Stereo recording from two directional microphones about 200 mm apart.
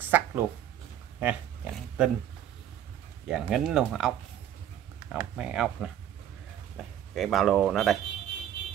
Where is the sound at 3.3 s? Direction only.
Centre (ahead or behind).